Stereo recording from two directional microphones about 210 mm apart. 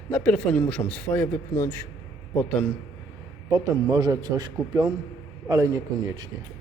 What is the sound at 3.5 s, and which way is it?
A man's voice, 15° right (ahead or behind).